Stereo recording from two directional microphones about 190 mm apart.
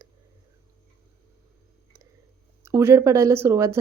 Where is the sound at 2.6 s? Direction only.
15° right (ahead or behind).